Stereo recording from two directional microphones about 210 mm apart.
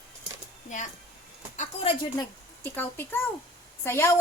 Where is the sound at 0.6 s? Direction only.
35° left (ahead or behind).